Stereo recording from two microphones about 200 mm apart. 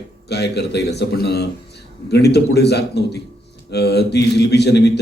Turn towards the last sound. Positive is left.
turn(degrees=55)  # may be behind; listen again after turning